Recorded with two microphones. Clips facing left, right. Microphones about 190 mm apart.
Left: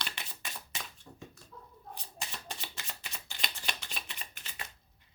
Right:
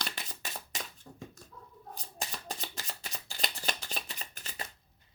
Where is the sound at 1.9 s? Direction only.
40° right (ahead or behind).